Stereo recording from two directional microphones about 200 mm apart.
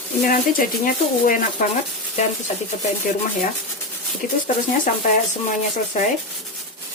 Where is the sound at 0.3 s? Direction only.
45° left (ahead or behind).